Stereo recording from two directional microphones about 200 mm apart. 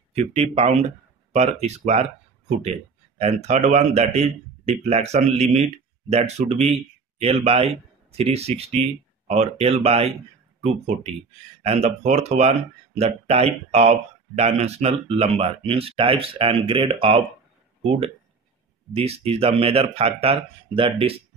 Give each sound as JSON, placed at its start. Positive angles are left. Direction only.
{"t": 0.1, "sound": "speech", "side_deg": -30}
{"t": 3.2, "sound": "speech", "side_deg": -35}
{"t": 11.6, "sound": "speech", "side_deg": -30}